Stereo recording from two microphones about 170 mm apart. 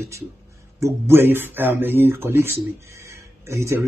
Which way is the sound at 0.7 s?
15° right (ahead or behind).